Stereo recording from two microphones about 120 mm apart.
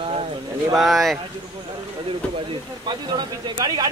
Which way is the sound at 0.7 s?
Centre (ahead or behind).